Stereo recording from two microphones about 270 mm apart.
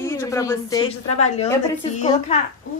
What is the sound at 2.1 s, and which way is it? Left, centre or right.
Speech, left.